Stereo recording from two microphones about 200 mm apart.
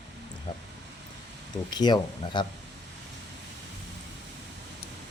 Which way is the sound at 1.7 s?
20° left (ahead or behind).